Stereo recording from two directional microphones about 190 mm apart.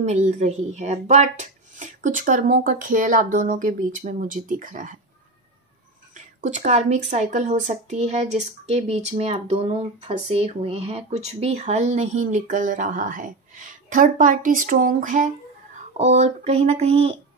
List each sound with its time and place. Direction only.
0.0 s speech: 35° right (ahead or behind)
6.1 s speech: 40° right (ahead or behind)